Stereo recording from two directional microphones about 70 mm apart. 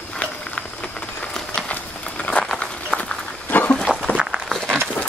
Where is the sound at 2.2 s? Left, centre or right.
Centre.